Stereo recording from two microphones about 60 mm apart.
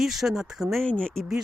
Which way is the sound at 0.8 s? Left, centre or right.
Centre.